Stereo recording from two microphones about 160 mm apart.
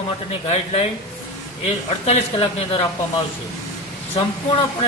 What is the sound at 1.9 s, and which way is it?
Speech, 40° left (ahead or behind).